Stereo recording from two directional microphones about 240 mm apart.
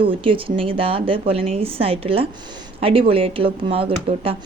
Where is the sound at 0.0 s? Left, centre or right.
Right.